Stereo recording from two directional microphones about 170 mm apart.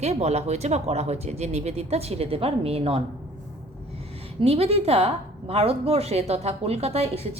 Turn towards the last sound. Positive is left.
turn(degrees=-35)  # may be behind; listen again after turning